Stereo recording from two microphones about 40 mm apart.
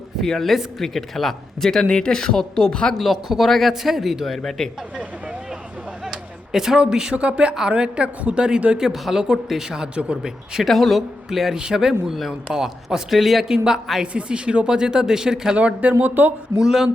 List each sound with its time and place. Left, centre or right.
0.2 s speech: centre
1.8 s speech: left
3.0 s speech: centre
4.4 s speech: centre
6.1 s a sound: centre
7.1 s a woman's voice: right
8.8 s speech: centre
9.9 s speech: right
10.2 s speech: centre
10.7 s speech: centre
13.4 s speech: centre
15.5 s a woman's voice: right
16.6 s speech: centre